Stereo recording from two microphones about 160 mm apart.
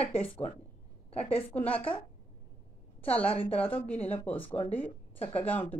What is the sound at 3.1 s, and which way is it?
Speech, 10° left (ahead or behind).